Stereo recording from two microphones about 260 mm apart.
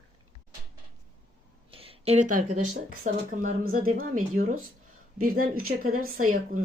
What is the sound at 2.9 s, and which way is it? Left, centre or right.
Speech, right.